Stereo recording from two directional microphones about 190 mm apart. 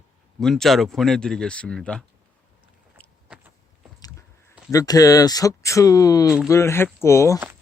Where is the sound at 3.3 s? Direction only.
5° right (ahead or behind).